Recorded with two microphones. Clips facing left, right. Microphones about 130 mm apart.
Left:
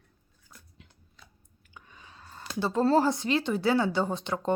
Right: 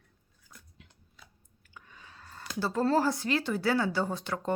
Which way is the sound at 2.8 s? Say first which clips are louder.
Left 3 dB; 25° left (ahead or behind).